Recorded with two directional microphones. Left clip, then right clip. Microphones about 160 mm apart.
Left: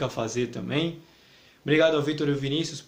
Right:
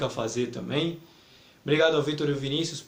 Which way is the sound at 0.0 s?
50° left (ahead or behind).